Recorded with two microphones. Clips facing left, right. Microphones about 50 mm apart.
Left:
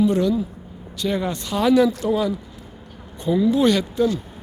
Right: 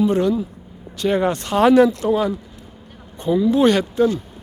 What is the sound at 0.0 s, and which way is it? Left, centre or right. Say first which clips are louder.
Speech: right 1 dB; right.